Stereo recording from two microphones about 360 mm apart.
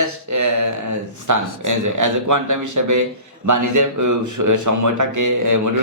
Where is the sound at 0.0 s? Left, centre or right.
Right.